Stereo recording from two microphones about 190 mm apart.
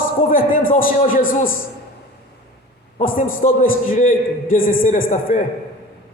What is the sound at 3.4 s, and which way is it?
A man's voice, 40° left (ahead or behind).